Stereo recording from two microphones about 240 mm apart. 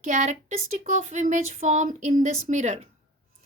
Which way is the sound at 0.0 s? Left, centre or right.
Right.